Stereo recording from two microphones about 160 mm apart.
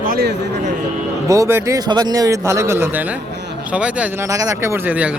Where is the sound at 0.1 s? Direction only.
85° right.